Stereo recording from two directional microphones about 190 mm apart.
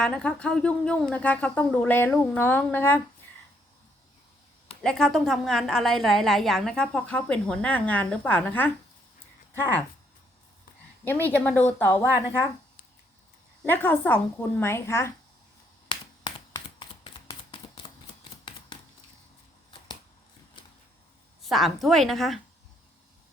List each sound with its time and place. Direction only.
0.0 s speech: 5° left (ahead or behind)
4.8 s a woman's voice: 5° left (ahead or behind)
11.0 s speech: 10° left (ahead or behind)
13.7 s speech: 10° left (ahead or behind)
15.9 s a sound: 25° left (ahead or behind)
21.5 s a woman's voice: centre (ahead or behind)